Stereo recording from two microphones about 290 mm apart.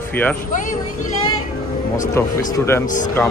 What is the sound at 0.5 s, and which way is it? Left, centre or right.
Speech, left.